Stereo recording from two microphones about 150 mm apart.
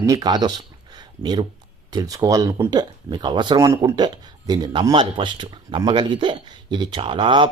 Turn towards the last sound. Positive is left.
turn(degrees=-35)  # may be behind; listen again after turning